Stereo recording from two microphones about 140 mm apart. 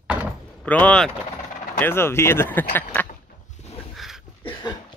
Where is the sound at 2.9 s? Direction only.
15° left (ahead or behind).